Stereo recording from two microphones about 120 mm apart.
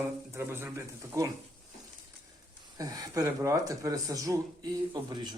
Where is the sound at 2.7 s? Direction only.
30° right (ahead or behind).